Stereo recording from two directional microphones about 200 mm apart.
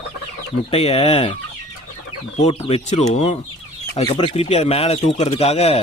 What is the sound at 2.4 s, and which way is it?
Speech, 30° left (ahead or behind).